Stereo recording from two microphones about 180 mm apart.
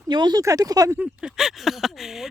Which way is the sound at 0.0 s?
25° right (ahead or behind).